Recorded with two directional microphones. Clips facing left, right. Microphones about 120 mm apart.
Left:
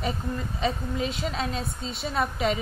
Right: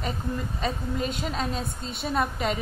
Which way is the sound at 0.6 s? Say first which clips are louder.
Left 3 dB; centre (ahead or behind).